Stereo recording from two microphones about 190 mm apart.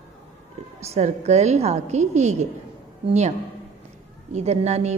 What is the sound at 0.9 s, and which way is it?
A woman's voice, 35° right (ahead or behind).